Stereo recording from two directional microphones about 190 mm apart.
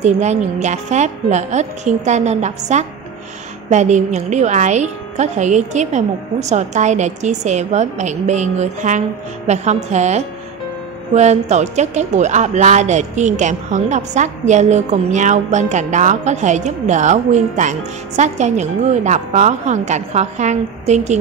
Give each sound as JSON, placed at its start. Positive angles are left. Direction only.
{"t": 0.0, "sound": "speech", "side_deg": -35}